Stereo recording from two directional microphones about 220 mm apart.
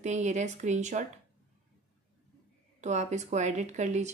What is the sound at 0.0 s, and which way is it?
Speech, 30° right (ahead or behind).